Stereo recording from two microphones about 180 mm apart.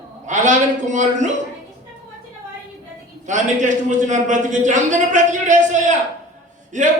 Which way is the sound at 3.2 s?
45° right (ahead or behind).